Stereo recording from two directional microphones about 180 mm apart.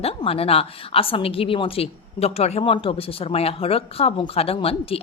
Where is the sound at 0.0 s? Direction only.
30° left (ahead or behind).